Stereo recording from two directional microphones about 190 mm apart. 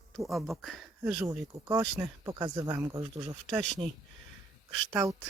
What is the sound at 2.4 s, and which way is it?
Speech, 20° right (ahead or behind).